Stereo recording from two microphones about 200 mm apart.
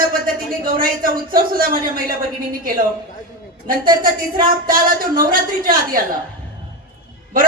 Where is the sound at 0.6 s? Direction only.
45° right (ahead or behind).